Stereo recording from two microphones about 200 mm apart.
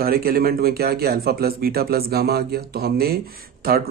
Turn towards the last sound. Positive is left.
turn(degrees=-50)  # may be behind; listen again after turning